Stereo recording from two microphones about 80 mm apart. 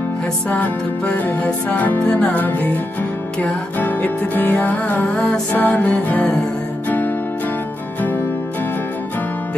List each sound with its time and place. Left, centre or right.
1.0 s music: left
5.6 s music: left